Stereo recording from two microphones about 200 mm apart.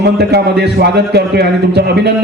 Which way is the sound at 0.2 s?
55° right (ahead or behind).